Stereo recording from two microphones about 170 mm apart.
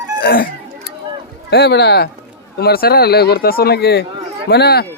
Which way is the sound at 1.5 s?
75° left (ahead or behind).